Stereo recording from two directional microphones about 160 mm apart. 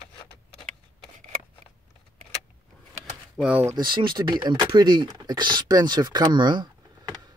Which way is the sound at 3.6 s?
25° right (ahead or behind).